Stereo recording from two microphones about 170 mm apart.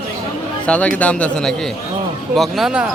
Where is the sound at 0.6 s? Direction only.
5° left (ahead or behind).